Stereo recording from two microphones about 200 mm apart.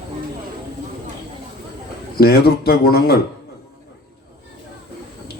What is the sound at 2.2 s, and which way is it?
Speech, 50° left (ahead or behind).